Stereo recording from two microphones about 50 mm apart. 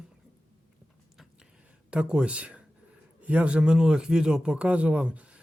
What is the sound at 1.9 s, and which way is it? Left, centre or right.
Speech, centre.